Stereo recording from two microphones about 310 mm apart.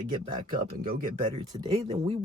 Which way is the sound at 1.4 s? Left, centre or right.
Centre.